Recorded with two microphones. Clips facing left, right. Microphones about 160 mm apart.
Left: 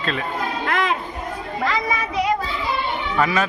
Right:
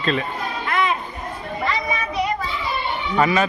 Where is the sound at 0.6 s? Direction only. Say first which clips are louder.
Right 1 dB; 90° left.